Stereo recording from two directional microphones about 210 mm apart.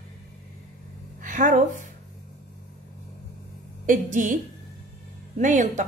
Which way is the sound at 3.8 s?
40° right (ahead or behind).